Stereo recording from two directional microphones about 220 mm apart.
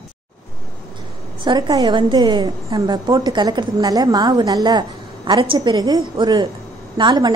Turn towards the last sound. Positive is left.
turn(degrees=-20)  # may be behind; listen again after turning